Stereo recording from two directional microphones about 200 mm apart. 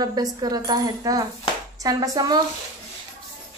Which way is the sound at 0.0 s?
20° right (ahead or behind).